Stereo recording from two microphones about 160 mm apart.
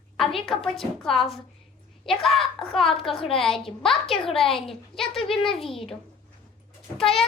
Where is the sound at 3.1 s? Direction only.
35° left (ahead or behind).